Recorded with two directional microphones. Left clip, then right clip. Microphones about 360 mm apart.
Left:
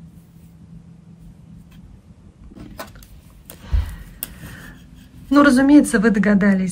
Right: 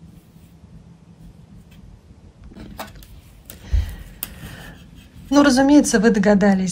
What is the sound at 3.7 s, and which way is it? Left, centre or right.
Gasp, centre.